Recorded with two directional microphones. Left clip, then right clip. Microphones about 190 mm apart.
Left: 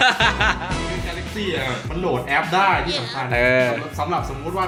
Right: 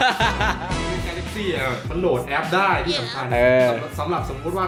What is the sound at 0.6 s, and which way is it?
Music, centre (ahead or behind).